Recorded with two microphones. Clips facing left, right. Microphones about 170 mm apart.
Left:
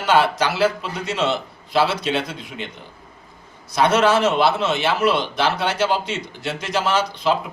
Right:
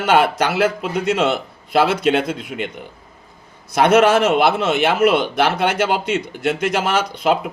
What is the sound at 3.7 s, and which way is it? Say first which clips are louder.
A man's voice: right 4 dB; 55° right (ahead or behind).